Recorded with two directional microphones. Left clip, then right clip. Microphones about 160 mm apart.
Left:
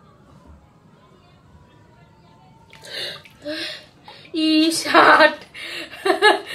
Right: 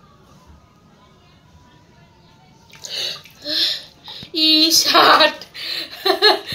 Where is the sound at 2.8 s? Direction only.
20° left (ahead or behind).